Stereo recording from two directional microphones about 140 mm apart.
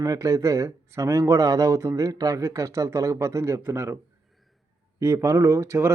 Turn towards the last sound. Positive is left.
turn(degrees=-20)  # may be behind; listen again after turning